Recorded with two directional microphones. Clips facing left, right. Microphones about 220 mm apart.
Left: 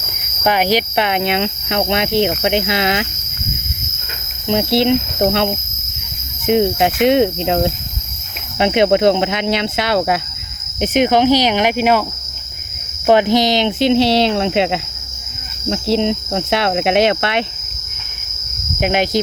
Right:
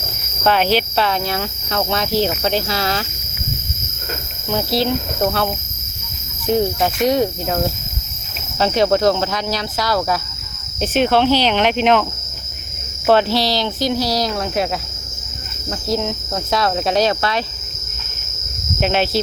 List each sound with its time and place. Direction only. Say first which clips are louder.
0.4 s cricket: left 1 dB; 15° left (ahead or behind)
4.4 s cricket: left 5 dB; 25° left (ahead or behind)
6.5 s cricket: left 3 dB; 20° left (ahead or behind)
10.8 s speech: left 2 dB; 15° left (ahead or behind)
13.1 s cricket: left 3 dB; 15° left (ahead or behind)
15.7 s cricket: left 5 dB; 25° left (ahead or behind)
18.8 s speech: left 2 dB; 15° left (ahead or behind)